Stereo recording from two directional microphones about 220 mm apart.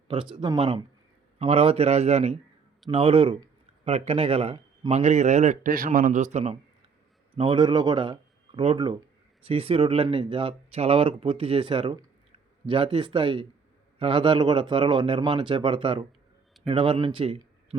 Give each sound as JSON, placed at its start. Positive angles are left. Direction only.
{"t": 0.1, "sound": "speech", "side_deg": -25}